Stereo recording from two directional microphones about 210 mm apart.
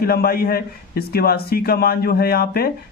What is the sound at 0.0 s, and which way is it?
A man's voice, 45° left (ahead or behind).